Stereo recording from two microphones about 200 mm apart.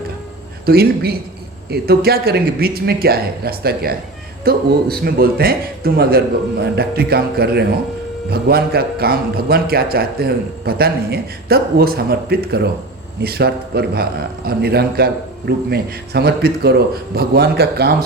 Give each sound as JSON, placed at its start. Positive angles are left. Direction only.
{"t": 0.6, "sound": "a man's voice", "side_deg": -50}